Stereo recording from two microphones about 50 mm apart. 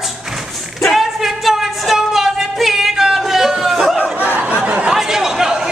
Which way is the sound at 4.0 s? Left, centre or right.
Right.